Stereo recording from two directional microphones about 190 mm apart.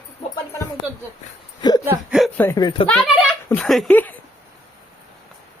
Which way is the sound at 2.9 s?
Centre (ahead or behind).